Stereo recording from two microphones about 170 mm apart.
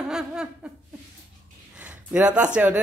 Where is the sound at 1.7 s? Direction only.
10° right (ahead or behind).